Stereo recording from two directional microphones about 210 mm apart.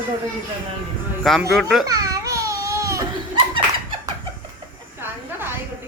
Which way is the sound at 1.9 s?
15° right (ahead or behind).